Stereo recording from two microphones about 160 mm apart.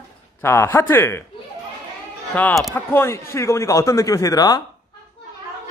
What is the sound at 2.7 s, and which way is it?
Speech, 15° left (ahead or behind).